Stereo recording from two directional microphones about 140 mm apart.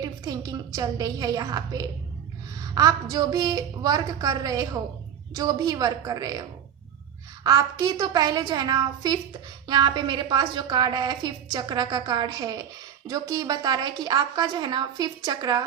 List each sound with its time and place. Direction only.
0.0 s a woman's voice: 25° right (ahead or behind)
7.4 s a woman's voice: 25° right (ahead or behind)